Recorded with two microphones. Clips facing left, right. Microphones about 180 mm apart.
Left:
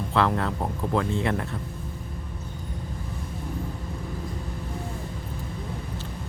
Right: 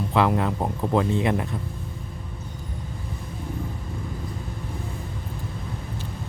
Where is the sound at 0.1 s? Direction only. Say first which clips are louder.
Right 2 dB; 15° right (ahead or behind).